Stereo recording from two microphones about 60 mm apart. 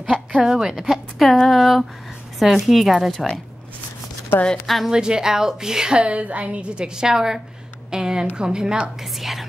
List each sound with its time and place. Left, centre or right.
0.3 s speech: centre
4.3 s a woman's voice: left
4.6 s speech: centre
4.9 s a woman's voice: centre
9.0 s a sound: centre